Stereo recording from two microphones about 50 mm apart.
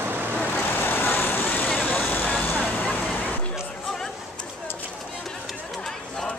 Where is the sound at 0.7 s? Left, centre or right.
Left.